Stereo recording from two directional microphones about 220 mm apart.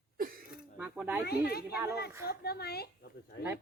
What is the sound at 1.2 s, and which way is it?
Speech, 45° left (ahead or behind).